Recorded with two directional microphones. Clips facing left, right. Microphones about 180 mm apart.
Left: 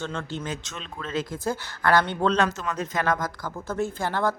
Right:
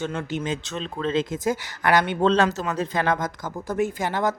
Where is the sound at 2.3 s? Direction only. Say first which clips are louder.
Right 3 dB; 35° right (ahead or behind).